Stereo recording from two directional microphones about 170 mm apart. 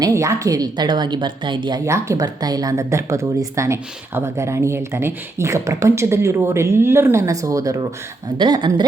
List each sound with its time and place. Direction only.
0.0 s a woman's voice: 20° right (ahead or behind)